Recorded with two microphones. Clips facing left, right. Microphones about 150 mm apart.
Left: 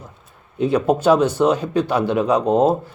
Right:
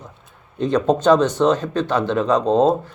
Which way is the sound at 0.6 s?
10° left (ahead or behind).